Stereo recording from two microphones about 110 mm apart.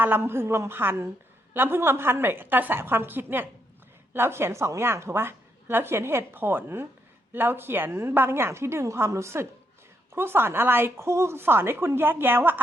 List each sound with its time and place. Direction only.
0.0 s a woman's voice: 20° right (ahead or behind)